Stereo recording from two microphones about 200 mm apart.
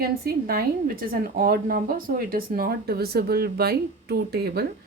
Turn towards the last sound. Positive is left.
turn(degrees=-55)  # may be behind; listen again after turning